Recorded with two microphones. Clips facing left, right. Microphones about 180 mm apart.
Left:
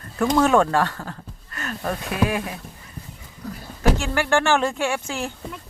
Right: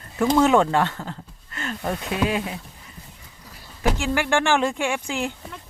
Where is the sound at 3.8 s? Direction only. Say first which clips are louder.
Left 1 dB; 15° right (ahead or behind).